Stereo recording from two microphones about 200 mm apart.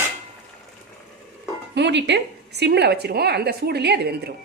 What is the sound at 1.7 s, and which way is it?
Speech, 60° right (ahead or behind).